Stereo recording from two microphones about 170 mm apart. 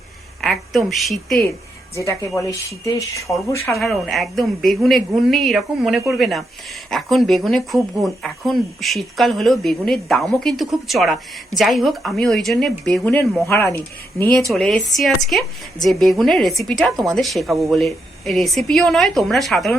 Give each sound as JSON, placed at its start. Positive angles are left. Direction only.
{"t": 0.4, "sound": "speech", "side_deg": 0}
{"t": 2.0, "sound": "speech", "side_deg": 20}
{"t": 3.8, "sound": "speech", "side_deg": 0}
{"t": 13.5, "sound": "speech", "side_deg": 15}
{"t": 14.5, "sound": "speech", "side_deg": 0}